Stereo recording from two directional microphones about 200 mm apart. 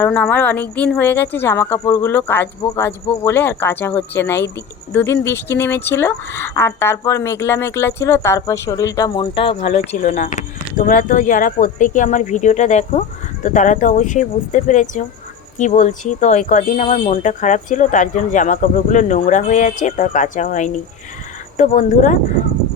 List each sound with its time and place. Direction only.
0.0 s speech: 5° left (ahead or behind); by 22.2 s 40° left (ahead or behind)